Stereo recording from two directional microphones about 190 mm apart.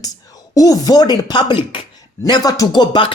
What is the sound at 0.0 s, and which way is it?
Speech, 20° left (ahead or behind).